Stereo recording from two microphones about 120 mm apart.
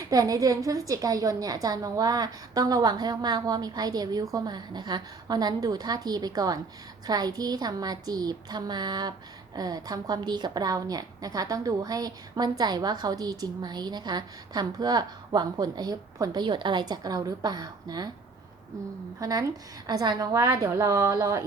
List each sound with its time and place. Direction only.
0.0 s a woman's voice: 30° right (ahead or behind)
19.2 s a woman's voice: 30° right (ahead or behind)